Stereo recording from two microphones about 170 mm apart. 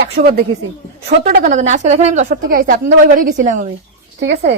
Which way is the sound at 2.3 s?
55° right (ahead or behind).